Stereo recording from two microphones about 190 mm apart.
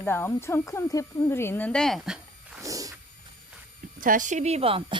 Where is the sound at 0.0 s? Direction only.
10° left (ahead or behind); by 2.6 s 5° right (ahead or behind).